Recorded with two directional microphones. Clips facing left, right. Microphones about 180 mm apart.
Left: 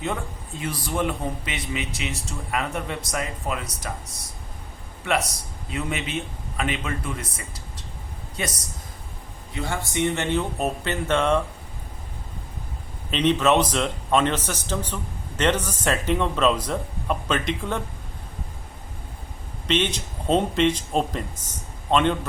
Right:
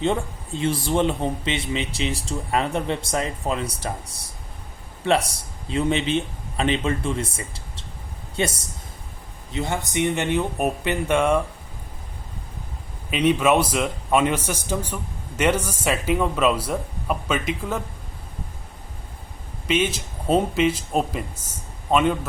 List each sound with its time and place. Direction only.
0.0 s a man's voice: 25° right (ahead or behind); by 11.4 s 10° right (ahead or behind)
13.1 s a man's voice: 10° right (ahead or behind)
19.6 s a man's voice: 10° right (ahead or behind)